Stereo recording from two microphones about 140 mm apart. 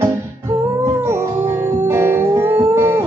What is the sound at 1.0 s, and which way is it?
Music, 20° right (ahead or behind).